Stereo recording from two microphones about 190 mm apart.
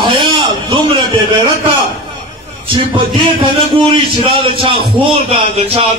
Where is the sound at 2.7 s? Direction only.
25° right (ahead or behind).